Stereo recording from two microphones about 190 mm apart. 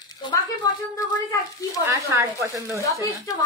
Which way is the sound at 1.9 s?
15° right (ahead or behind).